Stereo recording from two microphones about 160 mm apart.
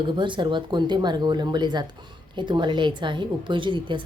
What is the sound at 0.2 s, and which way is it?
A woman's voice, 30° right (ahead or behind).